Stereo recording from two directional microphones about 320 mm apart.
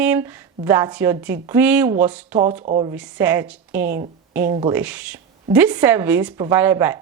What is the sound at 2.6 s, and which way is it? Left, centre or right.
Speech, centre.